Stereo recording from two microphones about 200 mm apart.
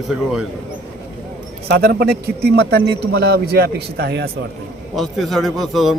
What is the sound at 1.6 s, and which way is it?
A man's voice, 55° right (ahead or behind).